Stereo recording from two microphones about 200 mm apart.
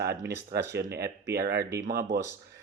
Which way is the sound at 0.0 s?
55° right (ahead or behind).